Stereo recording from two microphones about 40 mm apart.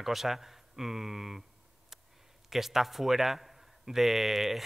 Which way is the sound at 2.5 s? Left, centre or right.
Centre.